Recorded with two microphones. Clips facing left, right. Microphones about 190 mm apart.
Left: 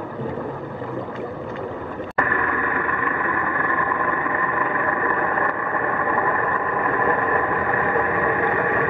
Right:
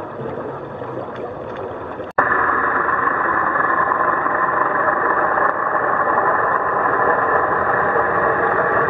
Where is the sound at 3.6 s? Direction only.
55° right (ahead or behind).